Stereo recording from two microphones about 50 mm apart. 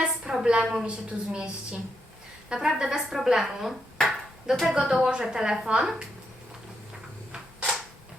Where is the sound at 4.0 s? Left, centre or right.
Centre.